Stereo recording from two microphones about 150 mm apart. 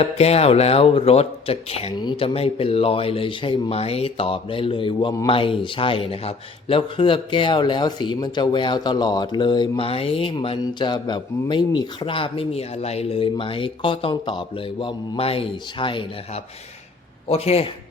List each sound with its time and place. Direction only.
0.0 s speech: 45° left (ahead or behind)